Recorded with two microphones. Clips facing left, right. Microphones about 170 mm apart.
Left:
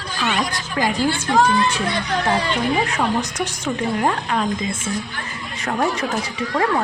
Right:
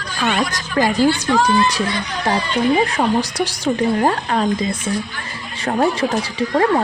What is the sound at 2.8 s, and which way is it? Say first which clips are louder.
Speech: right 4 dB; 35° right (ahead or behind).